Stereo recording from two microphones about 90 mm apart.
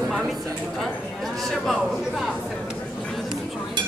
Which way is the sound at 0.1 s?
Centre (ahead or behind).